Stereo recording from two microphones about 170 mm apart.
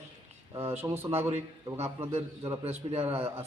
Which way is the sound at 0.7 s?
15° right (ahead or behind).